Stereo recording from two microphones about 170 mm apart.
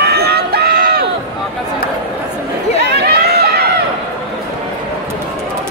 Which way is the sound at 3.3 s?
70° right (ahead or behind).